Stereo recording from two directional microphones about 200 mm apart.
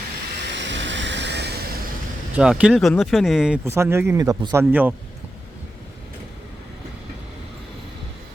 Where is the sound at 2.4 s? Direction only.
5° right (ahead or behind).